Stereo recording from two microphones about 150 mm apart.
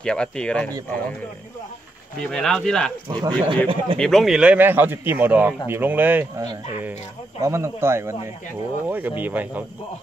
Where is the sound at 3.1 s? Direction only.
30° right (ahead or behind).